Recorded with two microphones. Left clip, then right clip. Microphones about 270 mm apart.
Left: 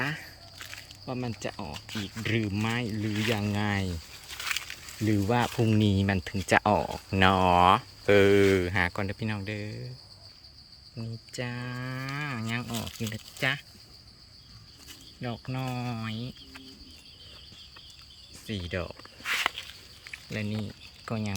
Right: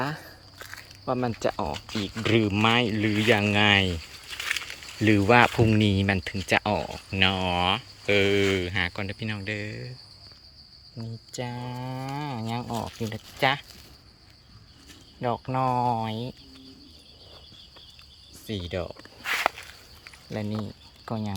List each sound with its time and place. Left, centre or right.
0.0 s a sound: centre
1.0 s speech: centre
5.3 s speech: centre
11.3 s speech: centre
15.2 s speech: centre
18.4 s speech: centre
19.2 s walk: centre
20.3 s speech: centre